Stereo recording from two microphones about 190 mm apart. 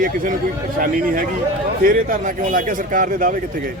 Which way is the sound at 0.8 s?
45° right (ahead or behind).